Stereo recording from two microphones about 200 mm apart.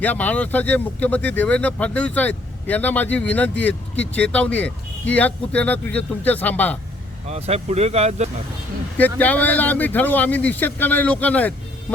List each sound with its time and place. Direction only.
0.0 s speech: 10° left (ahead or behind)
7.3 s speech: 30° right (ahead or behind)
9.0 s speech: 10° left (ahead or behind)